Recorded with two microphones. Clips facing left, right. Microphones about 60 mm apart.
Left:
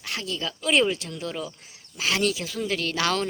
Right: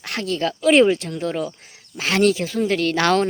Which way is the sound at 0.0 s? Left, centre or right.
Right.